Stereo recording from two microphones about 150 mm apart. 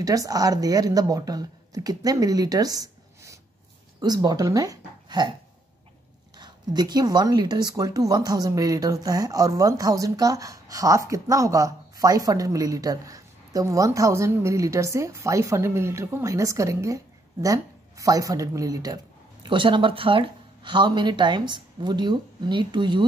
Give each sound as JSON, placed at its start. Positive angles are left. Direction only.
{"t": 0.0, "sound": "speech", "side_deg": -25}
{"t": 6.3, "sound": "speech", "side_deg": -30}